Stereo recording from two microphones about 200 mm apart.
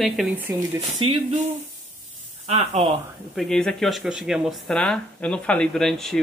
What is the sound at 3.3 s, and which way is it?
Speech, 5° left (ahead or behind).